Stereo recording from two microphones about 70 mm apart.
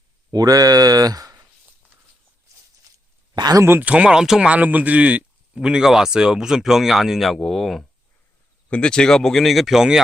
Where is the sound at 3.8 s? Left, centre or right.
Centre.